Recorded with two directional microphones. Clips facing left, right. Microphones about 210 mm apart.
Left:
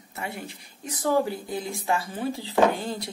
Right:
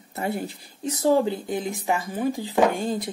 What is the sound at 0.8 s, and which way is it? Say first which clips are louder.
Speech: right 4 dB; 25° right (ahead or behind).